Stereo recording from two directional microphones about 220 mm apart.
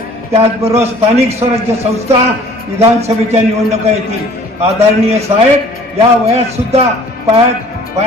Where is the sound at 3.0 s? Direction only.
30° right (ahead or behind).